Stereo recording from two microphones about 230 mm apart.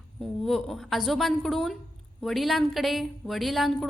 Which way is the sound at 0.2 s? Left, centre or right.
Centre.